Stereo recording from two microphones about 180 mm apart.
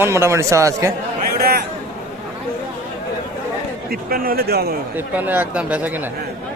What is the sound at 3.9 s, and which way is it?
Speech, 55° right (ahead or behind).